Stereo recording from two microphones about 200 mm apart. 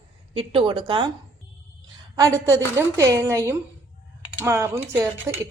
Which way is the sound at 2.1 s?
15° right (ahead or behind).